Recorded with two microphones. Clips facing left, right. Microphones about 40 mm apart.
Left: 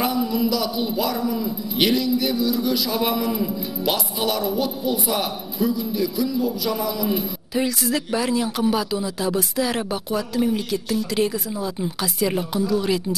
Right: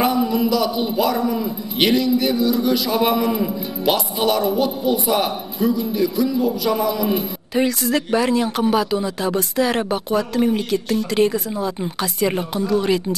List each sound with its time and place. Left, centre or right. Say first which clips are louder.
0.0 s a man's voice: right 4 dB; centre